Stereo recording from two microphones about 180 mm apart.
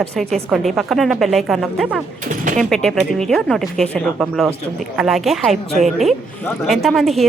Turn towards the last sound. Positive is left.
turn(degrees=0)  # may be behind; listen again after turning